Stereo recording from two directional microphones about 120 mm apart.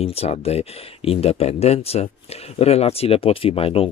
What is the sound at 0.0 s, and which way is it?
Speech, 55° left (ahead or behind).